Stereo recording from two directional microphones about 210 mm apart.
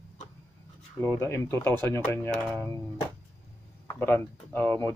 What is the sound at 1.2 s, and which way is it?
Speech, 10° left (ahead or behind).